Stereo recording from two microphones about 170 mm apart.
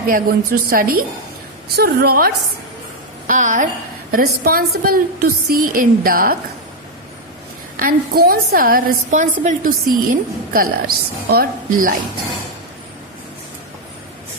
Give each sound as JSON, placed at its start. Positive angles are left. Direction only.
{"t": 0.1, "sound": "a woman's voice", "side_deg": -60}
{"t": 3.2, "sound": "a woman's voice", "side_deg": -50}
{"t": 4.1, "sound": "a woman's voice", "side_deg": -60}
{"t": 7.8, "sound": "a woman's voice", "side_deg": -60}